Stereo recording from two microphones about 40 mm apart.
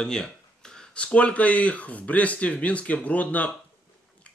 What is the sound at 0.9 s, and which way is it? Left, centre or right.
A man's voice, left.